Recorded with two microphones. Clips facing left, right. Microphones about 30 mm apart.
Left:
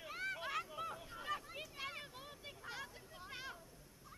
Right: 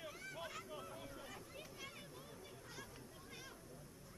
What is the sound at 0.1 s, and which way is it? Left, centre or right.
Vehicle, left.